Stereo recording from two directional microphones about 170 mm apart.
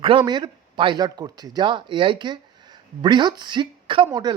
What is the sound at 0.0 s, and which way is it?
A man's voice, 30° right (ahead or behind).